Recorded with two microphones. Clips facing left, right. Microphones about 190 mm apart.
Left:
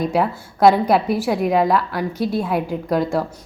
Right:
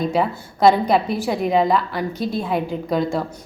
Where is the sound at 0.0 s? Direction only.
10° left (ahead or behind).